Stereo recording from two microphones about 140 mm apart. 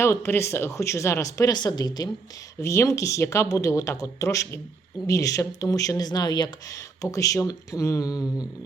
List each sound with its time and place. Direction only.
0.0 s speech: 20° left (ahead or behind)